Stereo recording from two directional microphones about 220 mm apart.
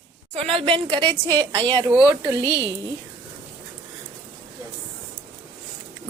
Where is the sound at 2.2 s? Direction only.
20° right (ahead or behind).